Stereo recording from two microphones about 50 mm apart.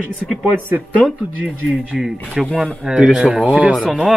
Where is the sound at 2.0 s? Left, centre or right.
Centre.